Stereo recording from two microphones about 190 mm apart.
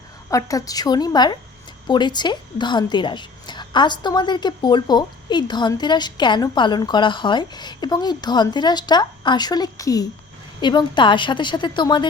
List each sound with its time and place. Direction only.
0.3 s a woman's voice: 15° left (ahead or behind)